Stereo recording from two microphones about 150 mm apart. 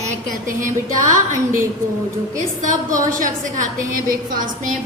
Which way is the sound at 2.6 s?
60° right (ahead or behind).